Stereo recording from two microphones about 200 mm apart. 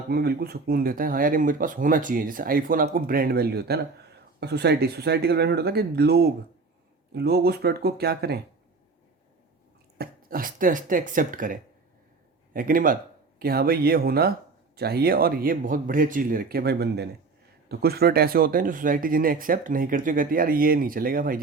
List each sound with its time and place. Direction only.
0.1 s speech: 50° right (ahead or behind)
10.0 s speech: 45° right (ahead or behind)